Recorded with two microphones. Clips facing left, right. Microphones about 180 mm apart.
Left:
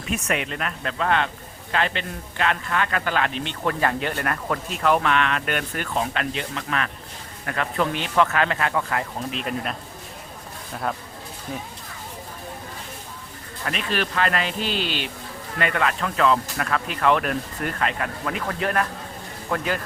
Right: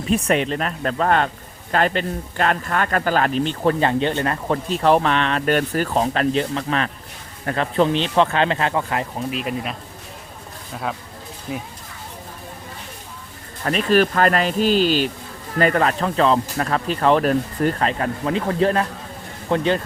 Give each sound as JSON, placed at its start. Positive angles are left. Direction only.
{"t": 0.1, "sound": "speech", "side_deg": -30}
{"t": 9.3, "sound": "speech", "side_deg": -5}
{"t": 10.9, "sound": "speech", "side_deg": 5}
{"t": 13.7, "sound": "speech", "side_deg": -40}